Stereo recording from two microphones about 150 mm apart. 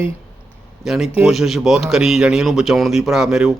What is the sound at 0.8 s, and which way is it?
A man's voice, centre (ahead or behind).